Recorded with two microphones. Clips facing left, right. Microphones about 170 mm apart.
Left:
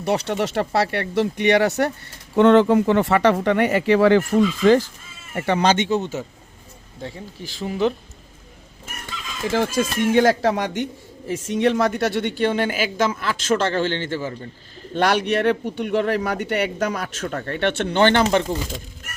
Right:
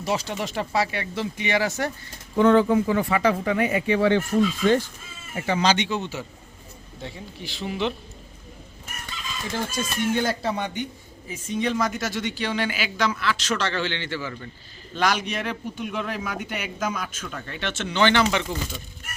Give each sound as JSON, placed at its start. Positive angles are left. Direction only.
{"t": 0.0, "sound": "speech", "side_deg": 65}
{"t": 5.3, "sound": "speech", "side_deg": 60}
{"t": 7.4, "sound": "speech", "side_deg": -15}
{"t": 9.5, "sound": "speech", "side_deg": 90}
{"t": 14.9, "sound": "speech", "side_deg": 65}
{"t": 17.3, "sound": "speech", "side_deg": 55}